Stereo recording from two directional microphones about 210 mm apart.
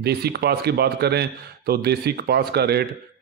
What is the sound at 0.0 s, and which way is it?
A man's voice, 50° right (ahead or behind).